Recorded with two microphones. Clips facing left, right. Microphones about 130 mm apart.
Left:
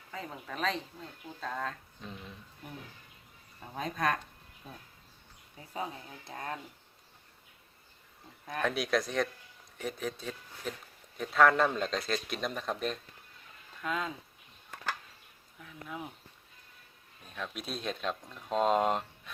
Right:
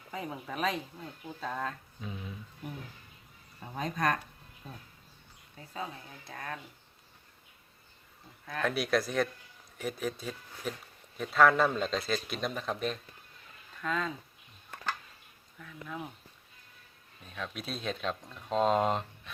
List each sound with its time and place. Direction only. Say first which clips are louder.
0.1 s speech: right 3 dB; 10° right (ahead or behind); by 4.8 s 5° left (ahead or behind)
5.5 s speech: left 2 dB; 20° left (ahead or behind)
8.6 s speech: right 1 dB; centre (ahead or behind)
15.5 s speech: right 1 dB; 5° left (ahead or behind)
17.2 s speech: even; centre (ahead or behind)